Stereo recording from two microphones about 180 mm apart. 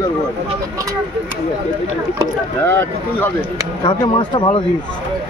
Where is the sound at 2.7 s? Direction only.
10° left (ahead or behind).